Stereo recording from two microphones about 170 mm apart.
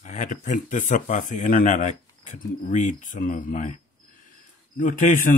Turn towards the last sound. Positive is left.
turn(degrees=50)  # may be behind; listen again after turning